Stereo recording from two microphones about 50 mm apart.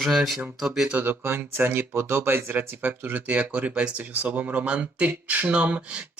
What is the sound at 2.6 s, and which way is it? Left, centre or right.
Speech, right.